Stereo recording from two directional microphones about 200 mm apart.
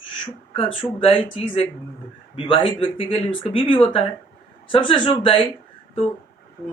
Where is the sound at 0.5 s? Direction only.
25° left (ahead or behind).